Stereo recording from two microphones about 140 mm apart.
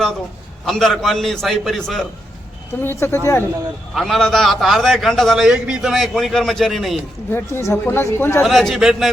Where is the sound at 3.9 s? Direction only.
Centre (ahead or behind).